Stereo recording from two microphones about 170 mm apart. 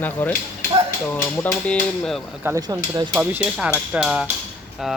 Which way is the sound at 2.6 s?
25° right (ahead or behind).